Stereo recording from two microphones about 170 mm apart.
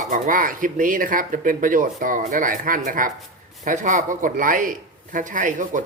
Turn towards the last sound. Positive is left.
turn(degrees=-50)  # may be behind; listen again after turning